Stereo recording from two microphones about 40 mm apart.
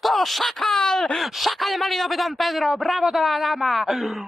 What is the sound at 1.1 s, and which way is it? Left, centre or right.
Speech, centre.